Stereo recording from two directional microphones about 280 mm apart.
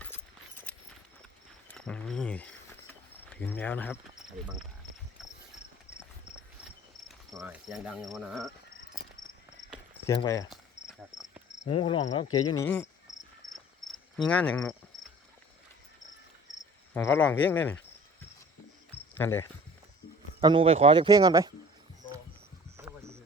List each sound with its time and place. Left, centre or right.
1.6 s speech: centre
7.3 s cricket: centre
10.1 s speech: centre
11.6 s cricket: centre
12.5 s speech: centre
14.2 s cricket: centre
16.9 s speech: centre
19.1 s speech: centre
20.4 s speech: centre
22.8 s a sound: centre